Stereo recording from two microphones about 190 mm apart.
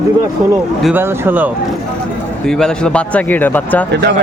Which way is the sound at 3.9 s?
60° right (ahead or behind).